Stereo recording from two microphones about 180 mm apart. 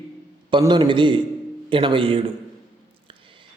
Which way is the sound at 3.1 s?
30° right (ahead or behind).